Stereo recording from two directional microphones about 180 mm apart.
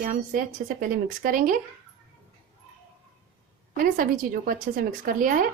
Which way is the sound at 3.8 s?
50° right (ahead or behind).